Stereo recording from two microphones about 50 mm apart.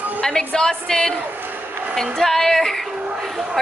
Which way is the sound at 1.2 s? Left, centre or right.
Right.